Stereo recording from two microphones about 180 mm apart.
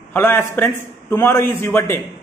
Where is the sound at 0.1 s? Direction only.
10° left (ahead or behind).